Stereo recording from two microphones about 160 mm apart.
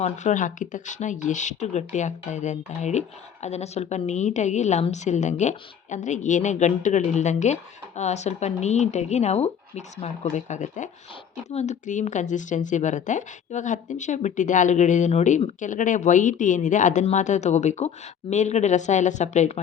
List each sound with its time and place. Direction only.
0.0 s speech: 50° left (ahead or behind)